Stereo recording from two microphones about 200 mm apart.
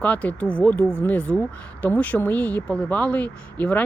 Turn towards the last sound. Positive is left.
turn(degrees=10)  # may be behind; listen again after turning